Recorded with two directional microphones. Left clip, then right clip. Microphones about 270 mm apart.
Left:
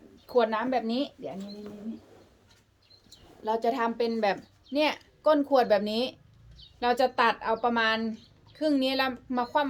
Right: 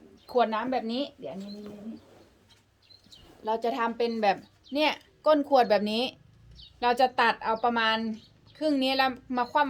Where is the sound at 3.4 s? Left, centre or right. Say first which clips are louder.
Left 1 dB; centre.